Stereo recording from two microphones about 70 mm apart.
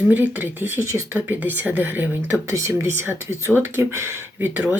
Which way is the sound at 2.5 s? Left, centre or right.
Right.